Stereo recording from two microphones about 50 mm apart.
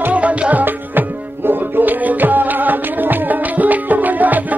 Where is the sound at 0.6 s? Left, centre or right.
Right.